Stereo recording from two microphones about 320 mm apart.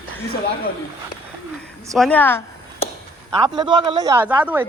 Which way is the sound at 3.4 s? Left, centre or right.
Centre.